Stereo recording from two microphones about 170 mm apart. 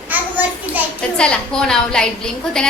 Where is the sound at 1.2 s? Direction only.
5° left (ahead or behind).